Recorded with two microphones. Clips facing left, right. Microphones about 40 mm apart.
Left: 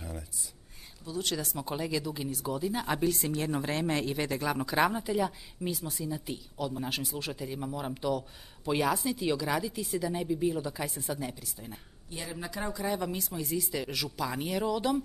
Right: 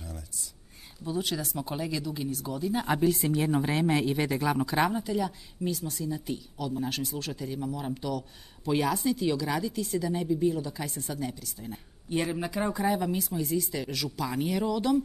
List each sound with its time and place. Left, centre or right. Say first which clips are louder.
1.2 s speech: right 1 dB; centre
2.7 s a woman's voice: right 6 dB; centre
5.0 s speech: even; centre
12.3 s speech: right 6 dB; right
12.8 s speech: right 2 dB; centre